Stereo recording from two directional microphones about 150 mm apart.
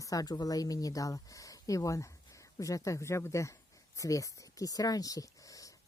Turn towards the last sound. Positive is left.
turn(degrees=25)  # may be behind; listen again after turning